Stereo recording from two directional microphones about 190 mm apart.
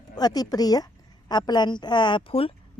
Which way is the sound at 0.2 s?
20° left (ahead or behind).